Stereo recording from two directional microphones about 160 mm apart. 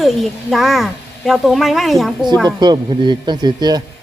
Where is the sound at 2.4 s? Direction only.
25° right (ahead or behind).